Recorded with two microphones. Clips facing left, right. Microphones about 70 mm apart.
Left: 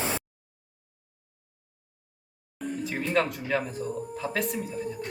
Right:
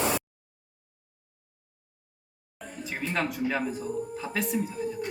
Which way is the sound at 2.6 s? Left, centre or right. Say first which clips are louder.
Left 4 dB; centre.